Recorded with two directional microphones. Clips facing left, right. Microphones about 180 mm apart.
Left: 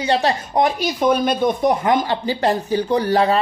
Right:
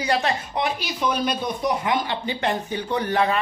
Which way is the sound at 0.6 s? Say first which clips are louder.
Left 7 dB; 50° left (ahead or behind).